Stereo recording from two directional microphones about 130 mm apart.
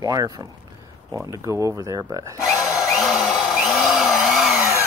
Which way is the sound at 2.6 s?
Centre (ahead or behind).